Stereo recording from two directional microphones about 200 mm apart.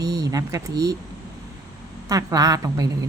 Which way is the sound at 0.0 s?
15° right (ahead or behind).